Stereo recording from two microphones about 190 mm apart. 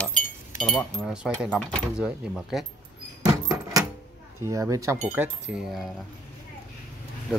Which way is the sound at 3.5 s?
20° right (ahead or behind).